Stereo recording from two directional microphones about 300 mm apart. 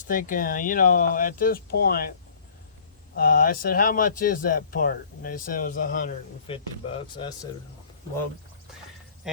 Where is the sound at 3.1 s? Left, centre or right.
Left.